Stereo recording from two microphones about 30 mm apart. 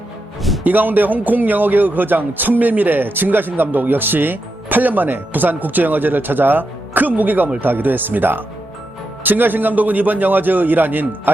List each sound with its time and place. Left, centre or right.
0.6 s speech: right